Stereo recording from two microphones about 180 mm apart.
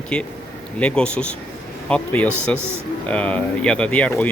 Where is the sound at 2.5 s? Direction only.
15° right (ahead or behind).